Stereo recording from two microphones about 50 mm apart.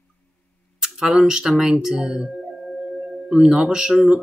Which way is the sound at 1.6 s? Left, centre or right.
Centre.